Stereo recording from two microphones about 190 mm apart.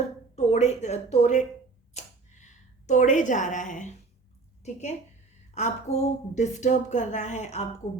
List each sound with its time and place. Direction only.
0.3 s speech: 35° left (ahead or behind)
1.9 s a sound: 40° left (ahead or behind)
4.6 s a woman's voice: 35° left (ahead or behind)